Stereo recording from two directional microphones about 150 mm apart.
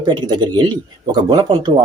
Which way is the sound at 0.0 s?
30° right (ahead or behind).